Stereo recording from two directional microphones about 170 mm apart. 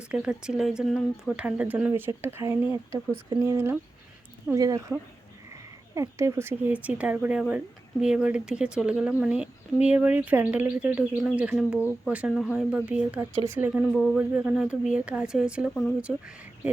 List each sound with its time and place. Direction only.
0.1 s speech: 5° right (ahead or behind)
13.9 s speech: centre (ahead or behind)